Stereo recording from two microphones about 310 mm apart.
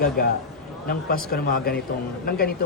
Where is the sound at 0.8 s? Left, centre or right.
Left.